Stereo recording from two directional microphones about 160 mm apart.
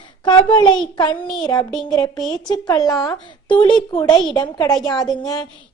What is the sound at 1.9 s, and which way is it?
Speech, 25° left (ahead or behind).